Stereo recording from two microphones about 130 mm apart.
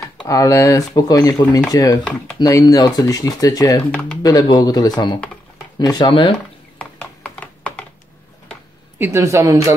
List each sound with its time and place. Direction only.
0.3 s speech: 25° left (ahead or behind); by 6.3 s 40° left (ahead or behind)
6.8 s a sound: 5° left (ahead or behind)
8.9 s a woman's voice: 20° right (ahead or behind)